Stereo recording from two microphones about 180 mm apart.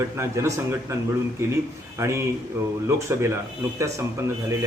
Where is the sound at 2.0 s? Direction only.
15° right (ahead or behind).